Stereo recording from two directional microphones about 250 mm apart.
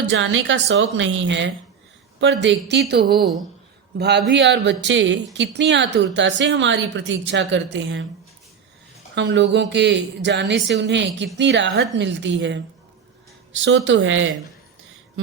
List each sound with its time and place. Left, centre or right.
0.1 s a woman's voice: right
9.1 s speech: right
13.7 s speech: right